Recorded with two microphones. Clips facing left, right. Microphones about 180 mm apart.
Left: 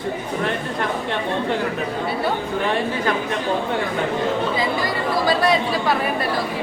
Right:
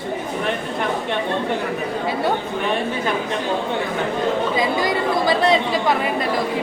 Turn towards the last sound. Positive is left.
turn(degrees=-20)  # may be behind; listen again after turning